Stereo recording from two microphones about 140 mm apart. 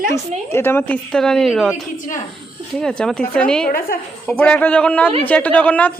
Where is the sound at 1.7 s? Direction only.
70° left (ahead or behind).